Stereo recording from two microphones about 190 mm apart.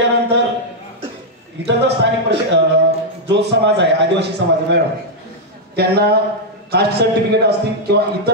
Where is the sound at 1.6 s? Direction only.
65° right (ahead or behind).